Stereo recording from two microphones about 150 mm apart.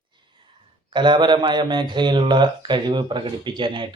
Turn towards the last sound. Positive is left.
turn(degrees=-30)  # may be behind; listen again after turning